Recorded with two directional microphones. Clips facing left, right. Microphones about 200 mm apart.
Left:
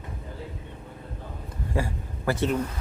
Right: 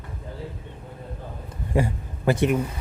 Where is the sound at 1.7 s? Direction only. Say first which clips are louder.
Right 5 dB; 20° right (ahead or behind).